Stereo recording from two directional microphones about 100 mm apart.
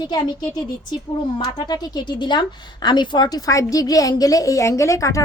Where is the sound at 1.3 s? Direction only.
45° left (ahead or behind).